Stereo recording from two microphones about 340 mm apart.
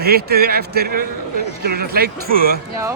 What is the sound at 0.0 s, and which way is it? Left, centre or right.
A man's voice, right.